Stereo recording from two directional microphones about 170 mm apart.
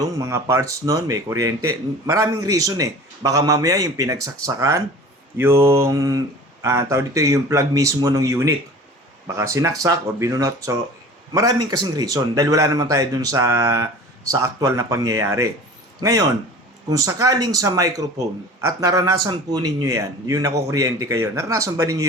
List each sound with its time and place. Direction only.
0.2 s speech: 20° right (ahead or behind)